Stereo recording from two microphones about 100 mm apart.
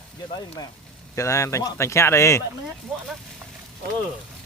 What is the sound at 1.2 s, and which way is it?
Speech, 30° left (ahead or behind).